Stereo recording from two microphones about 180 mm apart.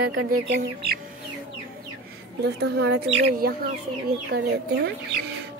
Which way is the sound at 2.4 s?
70° right (ahead or behind).